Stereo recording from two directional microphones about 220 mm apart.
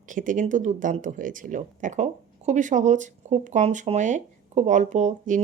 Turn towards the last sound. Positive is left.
turn(degrees=-35)  # may be behind; listen again after turning